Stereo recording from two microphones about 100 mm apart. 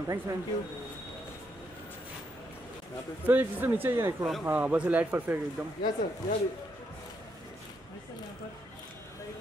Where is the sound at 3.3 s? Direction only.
20° right (ahead or behind).